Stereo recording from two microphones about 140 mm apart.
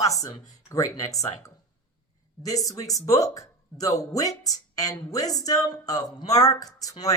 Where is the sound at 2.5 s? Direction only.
25° left (ahead or behind).